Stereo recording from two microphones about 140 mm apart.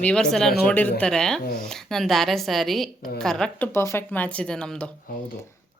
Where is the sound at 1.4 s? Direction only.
90° left.